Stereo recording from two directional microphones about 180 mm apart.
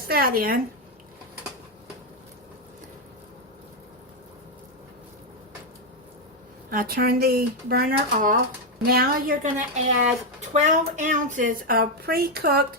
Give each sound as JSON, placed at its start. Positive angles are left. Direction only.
{"t": 0.1, "sound": "speech", "side_deg": -55}
{"t": 6.7, "sound": "a woman's voice", "side_deg": -55}